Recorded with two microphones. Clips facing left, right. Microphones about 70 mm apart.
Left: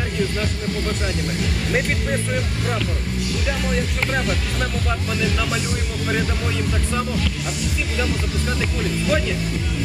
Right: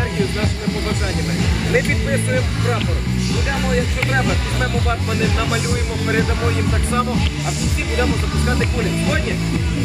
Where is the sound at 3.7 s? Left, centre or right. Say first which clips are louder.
Right 4 dB; right.